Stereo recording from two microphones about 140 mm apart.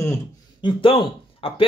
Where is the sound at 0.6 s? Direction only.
40° left (ahead or behind).